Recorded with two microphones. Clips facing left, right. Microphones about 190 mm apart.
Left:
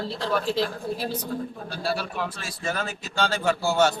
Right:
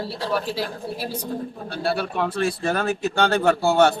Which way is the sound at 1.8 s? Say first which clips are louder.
Right 5 dB; 60° right (ahead or behind).